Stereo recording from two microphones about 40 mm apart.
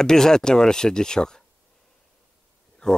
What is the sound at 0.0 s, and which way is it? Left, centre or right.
Speech, centre.